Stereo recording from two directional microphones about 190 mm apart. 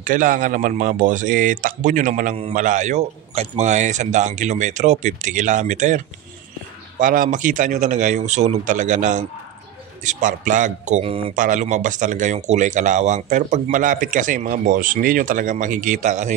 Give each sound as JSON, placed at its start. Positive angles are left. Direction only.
{"t": 0.0, "sound": "speech", "side_deg": -45}
{"t": 11.3, "sound": "speech", "side_deg": -40}